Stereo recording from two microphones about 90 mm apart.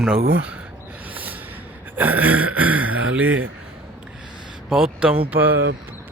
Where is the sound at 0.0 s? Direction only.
10° right (ahead or behind).